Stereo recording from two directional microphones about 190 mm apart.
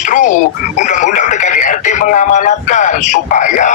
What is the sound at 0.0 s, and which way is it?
Frog, 40° left (ahead or behind).